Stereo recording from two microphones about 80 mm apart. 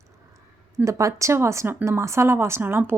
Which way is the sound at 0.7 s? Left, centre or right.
Right.